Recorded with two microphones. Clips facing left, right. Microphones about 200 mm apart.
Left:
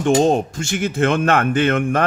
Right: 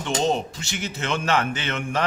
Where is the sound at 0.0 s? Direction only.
50° left (ahead or behind).